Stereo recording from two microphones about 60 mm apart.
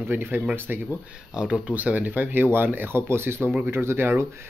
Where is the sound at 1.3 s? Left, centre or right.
Centre.